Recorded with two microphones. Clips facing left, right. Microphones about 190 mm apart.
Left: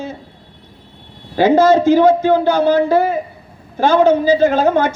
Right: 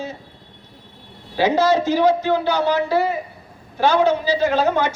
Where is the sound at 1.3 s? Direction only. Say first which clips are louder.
Left 6 dB; 50° left (ahead or behind).